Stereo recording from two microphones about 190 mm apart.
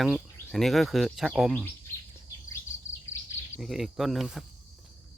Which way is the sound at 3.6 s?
Centre (ahead or behind).